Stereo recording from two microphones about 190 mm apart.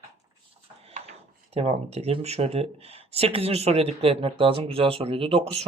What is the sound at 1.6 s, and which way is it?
Speech, 35° right (ahead or behind).